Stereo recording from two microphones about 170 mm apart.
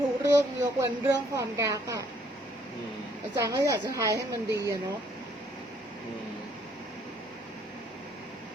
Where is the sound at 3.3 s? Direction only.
20° right (ahead or behind).